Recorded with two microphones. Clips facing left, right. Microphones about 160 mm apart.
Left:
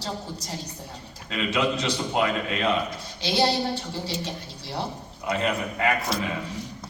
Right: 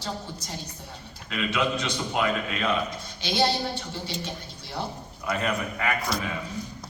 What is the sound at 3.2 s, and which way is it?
Speech, 35° left (ahead or behind).